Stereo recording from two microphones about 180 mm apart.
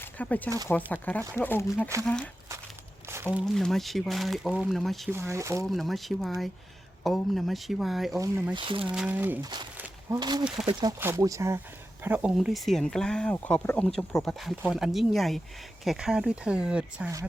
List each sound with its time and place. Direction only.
0.0 s speech: 10° left (ahead or behind)
3.3 s speech: centre (ahead or behind)
5.1 s speech: 15° right (ahead or behind)
5.6 s speech: centre (ahead or behind)
8.2 s speech: 15° right (ahead or behind)
8.5 s speech: 30° right (ahead or behind)
8.9 s speech: 5° right (ahead or behind)
9.4 s speech: 25° right (ahead or behind)
9.7 s a sound: 10° right (ahead or behind)
10.2 s speech: 25° right (ahead or behind); by 17.1 s 5° right (ahead or behind)